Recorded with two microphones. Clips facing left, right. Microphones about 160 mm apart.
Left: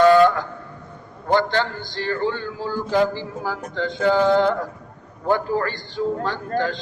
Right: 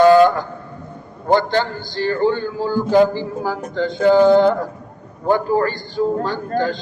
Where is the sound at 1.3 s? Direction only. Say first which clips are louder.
Right 3 dB; 35° right (ahead or behind).